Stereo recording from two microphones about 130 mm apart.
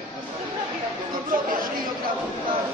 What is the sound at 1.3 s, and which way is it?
Chatter, 90° right.